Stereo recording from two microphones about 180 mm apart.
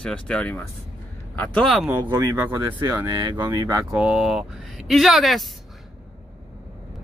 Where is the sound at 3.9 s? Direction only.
5° right (ahead or behind).